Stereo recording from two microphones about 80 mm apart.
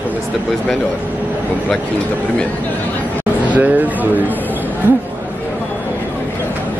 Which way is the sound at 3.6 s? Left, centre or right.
Right.